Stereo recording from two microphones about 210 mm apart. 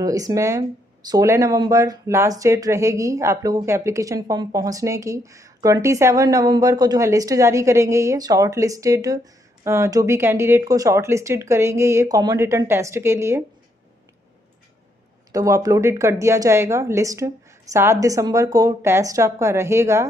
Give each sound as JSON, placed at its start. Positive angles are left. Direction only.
{"t": 0.0, "sound": "speech", "side_deg": -15}
{"t": 15.3, "sound": "speech", "side_deg": -15}